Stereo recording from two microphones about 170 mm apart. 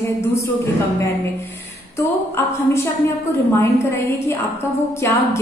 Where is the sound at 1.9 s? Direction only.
15° left (ahead or behind).